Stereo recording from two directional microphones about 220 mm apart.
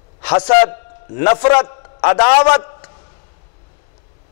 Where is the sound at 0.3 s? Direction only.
20° left (ahead or behind).